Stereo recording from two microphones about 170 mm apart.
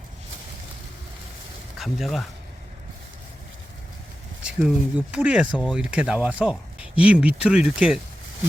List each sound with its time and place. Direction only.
1.8 s speech: centre (ahead or behind)
4.4 s speech: 5° right (ahead or behind)